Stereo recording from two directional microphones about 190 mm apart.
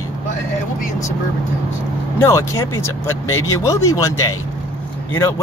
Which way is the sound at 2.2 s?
15° left (ahead or behind).